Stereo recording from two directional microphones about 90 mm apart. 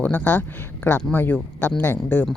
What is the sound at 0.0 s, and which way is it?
Speech, 20° left (ahead or behind).